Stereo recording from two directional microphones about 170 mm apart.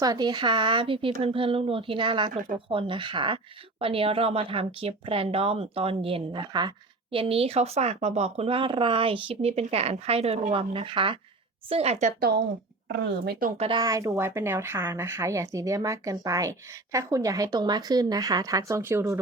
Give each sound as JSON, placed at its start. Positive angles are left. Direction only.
{"t": 0.0, "sound": "speech", "side_deg": -25}
{"t": 12.9, "sound": "speech", "side_deg": -75}
{"t": 13.6, "sound": "speech", "side_deg": -30}